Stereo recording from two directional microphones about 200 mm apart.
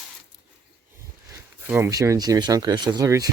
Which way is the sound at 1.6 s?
15° right (ahead or behind).